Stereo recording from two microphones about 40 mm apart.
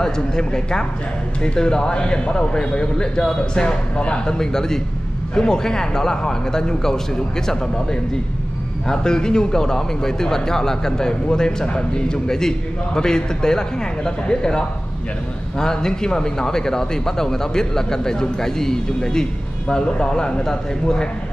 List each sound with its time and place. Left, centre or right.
0.0 s a man's voice: centre
4.4 s speech: centre
8.8 s a man's voice: centre